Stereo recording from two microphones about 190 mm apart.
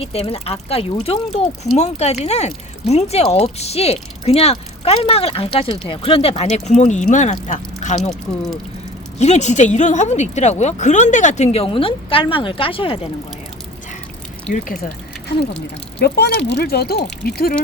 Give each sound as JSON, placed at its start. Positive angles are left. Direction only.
{"t": 0.0, "sound": "speech", "side_deg": 30}
{"t": 9.1, "sound": "speech", "side_deg": 35}
{"t": 16.0, "sound": "speech", "side_deg": 60}